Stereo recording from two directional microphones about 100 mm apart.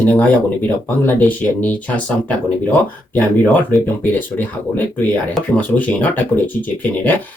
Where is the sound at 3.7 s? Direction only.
20° left (ahead or behind).